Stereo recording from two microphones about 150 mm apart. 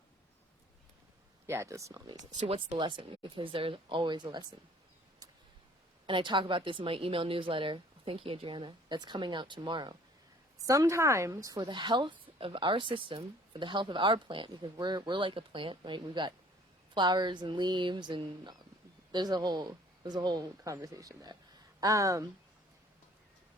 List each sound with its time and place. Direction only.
1.5 s speech: 20° right (ahead or behind)
2.4 s speech: 50° right (ahead or behind)
2.7 s a woman's voice: 30° right (ahead or behind)
6.1 s a woman's voice: 35° right (ahead or behind)